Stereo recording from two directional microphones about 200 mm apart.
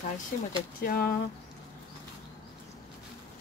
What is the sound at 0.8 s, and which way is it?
Speech, 50° left (ahead or behind).